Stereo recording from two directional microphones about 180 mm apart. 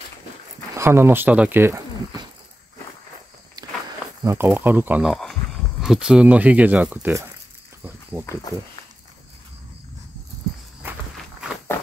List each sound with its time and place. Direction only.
0.7 s speech: 15° right (ahead or behind)
3.6 s walk: 20° right (ahead or behind)
4.2 s speech: 15° right (ahead or behind)
7.8 s snake: 10° right (ahead or behind)
10.8 s walk: 10° right (ahead or behind)